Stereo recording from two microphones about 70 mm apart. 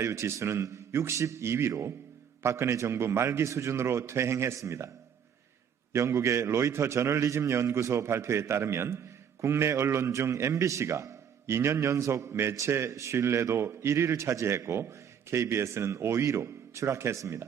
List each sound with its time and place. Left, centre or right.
0.0 s a man's voice: right
5.9 s a man's voice: right